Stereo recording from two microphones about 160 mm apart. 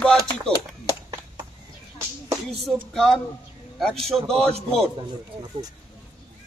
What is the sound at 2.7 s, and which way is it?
Speech, centre (ahead or behind).